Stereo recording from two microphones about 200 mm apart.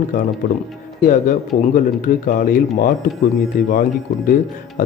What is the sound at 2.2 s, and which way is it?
Speech, 40° left (ahead or behind).